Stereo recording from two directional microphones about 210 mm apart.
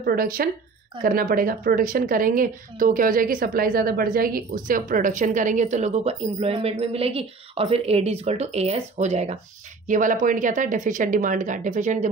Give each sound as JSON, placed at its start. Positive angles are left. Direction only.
{"t": 0.0, "sound": "a woman's voice", "side_deg": -45}